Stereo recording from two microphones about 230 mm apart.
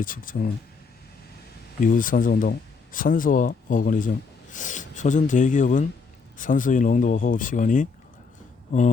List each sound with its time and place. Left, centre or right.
0.0 s speech: left
1.8 s speech: left